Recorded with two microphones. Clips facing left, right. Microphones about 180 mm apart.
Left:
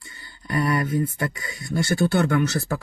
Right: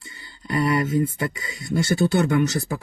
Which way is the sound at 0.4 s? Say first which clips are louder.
Right 2 dB; 20° right (ahead or behind).